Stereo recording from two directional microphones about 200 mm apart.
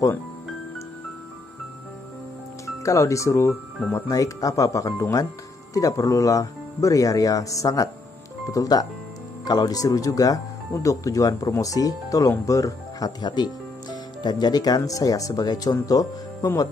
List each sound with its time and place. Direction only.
2.6 s speech: 15° left (ahead or behind)